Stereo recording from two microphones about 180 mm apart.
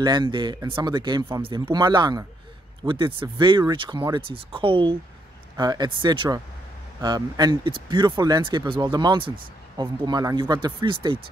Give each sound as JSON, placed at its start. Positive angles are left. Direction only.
{"t": 0.0, "sound": "speech", "side_deg": -25}